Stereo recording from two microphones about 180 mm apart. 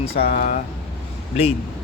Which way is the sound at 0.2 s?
50° left (ahead or behind).